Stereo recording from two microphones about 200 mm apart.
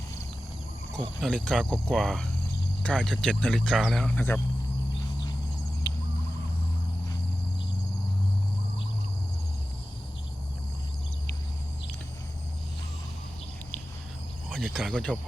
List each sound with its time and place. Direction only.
0.9 s speech: 5° left (ahead or behind)
5.9 s a sound: 20° left (ahead or behind)
14.5 s speech: centre (ahead or behind)